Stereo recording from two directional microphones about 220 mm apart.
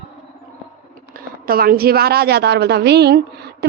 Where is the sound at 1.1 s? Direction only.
40° right (ahead or behind).